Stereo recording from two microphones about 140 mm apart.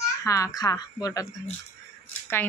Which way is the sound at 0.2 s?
25° left (ahead or behind).